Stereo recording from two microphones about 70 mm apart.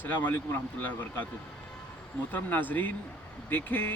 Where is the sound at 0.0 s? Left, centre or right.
Left.